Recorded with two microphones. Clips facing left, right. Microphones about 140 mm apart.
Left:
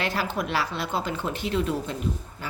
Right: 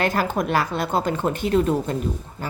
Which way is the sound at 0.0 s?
50° right (ahead or behind).